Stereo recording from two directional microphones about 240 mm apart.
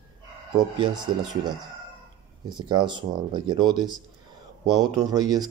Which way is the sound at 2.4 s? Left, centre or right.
Centre.